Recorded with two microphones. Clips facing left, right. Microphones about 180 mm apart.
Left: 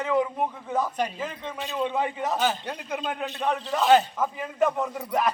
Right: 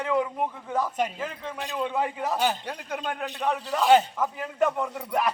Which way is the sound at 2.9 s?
5° left (ahead or behind).